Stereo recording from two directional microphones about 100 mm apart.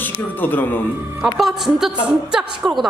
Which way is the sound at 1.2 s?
5° right (ahead or behind).